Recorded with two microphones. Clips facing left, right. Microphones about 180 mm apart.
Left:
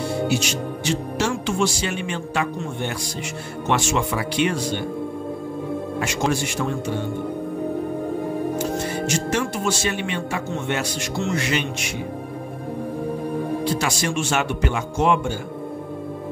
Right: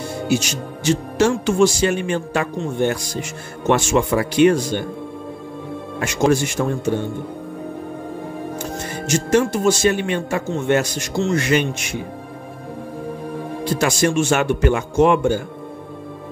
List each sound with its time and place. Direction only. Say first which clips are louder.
0.3 s speech: right 2 dB; 45° right (ahead or behind)
5.9 s speech: right 7 dB; 45° right (ahead or behind)
9.0 s speech: right 10 dB; 45° right (ahead or behind)
13.7 s speech: right 6 dB; 45° right (ahead or behind)